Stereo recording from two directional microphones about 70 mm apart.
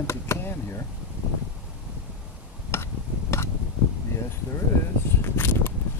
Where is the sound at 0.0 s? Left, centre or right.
Left.